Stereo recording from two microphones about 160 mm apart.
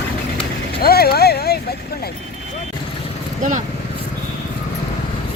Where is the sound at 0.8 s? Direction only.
75° left (ahead or behind).